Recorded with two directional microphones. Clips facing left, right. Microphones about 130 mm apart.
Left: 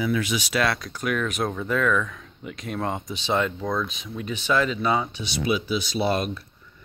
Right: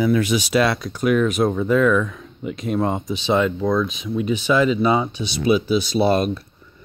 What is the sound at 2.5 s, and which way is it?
Speech, 25° right (ahead or behind).